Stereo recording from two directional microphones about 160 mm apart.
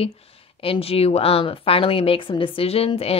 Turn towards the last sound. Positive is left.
turn(degrees=40)  # may be behind; listen again after turning